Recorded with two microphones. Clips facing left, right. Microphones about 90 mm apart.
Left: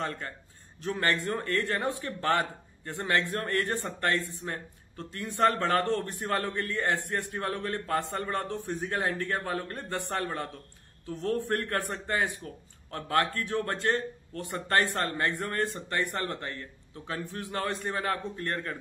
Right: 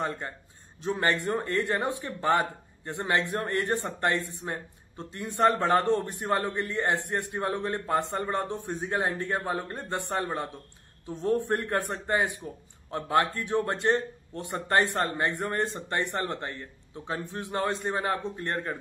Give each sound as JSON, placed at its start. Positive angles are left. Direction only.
{"t": 0.0, "sound": "a man's voice", "side_deg": -20}